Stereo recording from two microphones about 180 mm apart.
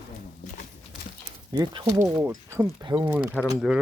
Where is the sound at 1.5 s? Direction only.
25° right (ahead or behind).